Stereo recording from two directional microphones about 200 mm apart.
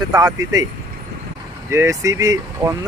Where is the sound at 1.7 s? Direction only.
15° right (ahead or behind).